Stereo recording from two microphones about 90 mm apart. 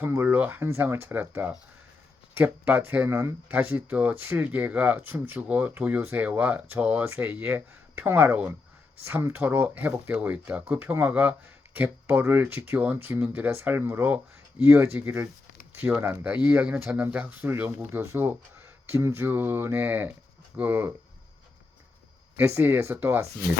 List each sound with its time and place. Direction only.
0.0 s speech: 25° right (ahead or behind)
22.4 s speech: 25° right (ahead or behind)